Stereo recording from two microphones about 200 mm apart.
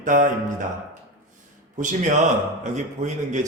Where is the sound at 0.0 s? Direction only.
40° right (ahead or behind).